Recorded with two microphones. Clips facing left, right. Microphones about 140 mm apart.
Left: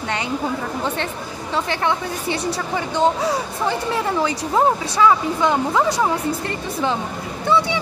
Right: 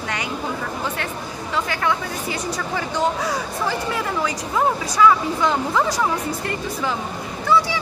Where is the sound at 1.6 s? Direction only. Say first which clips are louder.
Left 2 dB; 30° left (ahead or behind).